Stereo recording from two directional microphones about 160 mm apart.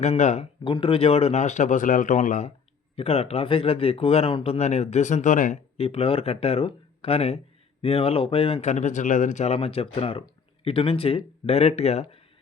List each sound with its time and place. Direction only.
0.0 s speech: 45° left (ahead or behind)
0.6 s speech: 30° left (ahead or behind); by 2.5 s 50° left (ahead or behind)
2.9 s speech: 40° left (ahead or behind); by 5.5 s 55° left (ahead or behind)
5.7 s speech: 40° left (ahead or behind)